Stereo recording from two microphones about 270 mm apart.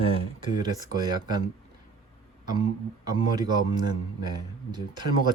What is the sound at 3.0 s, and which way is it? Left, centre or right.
A man's voice, centre.